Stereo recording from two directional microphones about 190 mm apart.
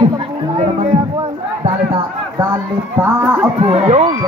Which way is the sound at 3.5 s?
35° right (ahead or behind).